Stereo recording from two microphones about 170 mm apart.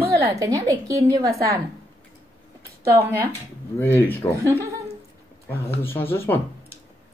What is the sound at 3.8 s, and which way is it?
Speech, 10° left (ahead or behind).